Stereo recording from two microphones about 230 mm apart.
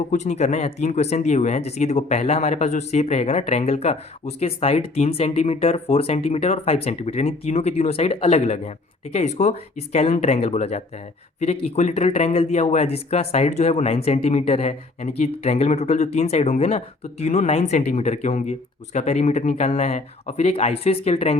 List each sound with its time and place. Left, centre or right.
0.1 s speech: left